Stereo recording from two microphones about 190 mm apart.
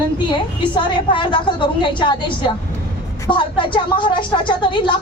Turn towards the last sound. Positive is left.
turn(degrees=25)  # may be behind; listen again after turning